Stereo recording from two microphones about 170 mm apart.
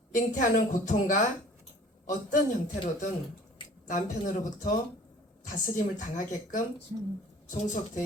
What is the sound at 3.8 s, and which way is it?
A woman's voice, 50° left (ahead or behind).